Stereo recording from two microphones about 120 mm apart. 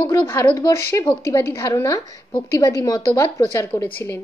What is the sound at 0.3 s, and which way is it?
A woman's voice, 20° left (ahead or behind).